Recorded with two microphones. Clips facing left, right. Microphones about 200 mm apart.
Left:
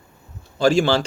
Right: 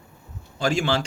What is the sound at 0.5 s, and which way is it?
Speech, 35° left (ahead or behind).